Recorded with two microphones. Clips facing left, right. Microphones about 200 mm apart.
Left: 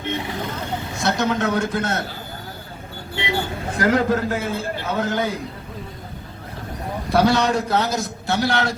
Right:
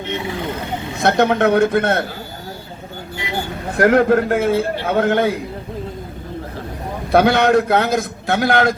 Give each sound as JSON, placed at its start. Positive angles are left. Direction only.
{"t": 1.0, "sound": "a man's voice", "side_deg": -60}
{"t": 3.8, "sound": "a man's voice", "side_deg": -60}
{"t": 7.1, "sound": "a man's voice", "side_deg": -55}